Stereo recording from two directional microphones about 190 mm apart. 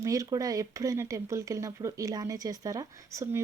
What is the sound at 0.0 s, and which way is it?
Speech, 20° right (ahead or behind).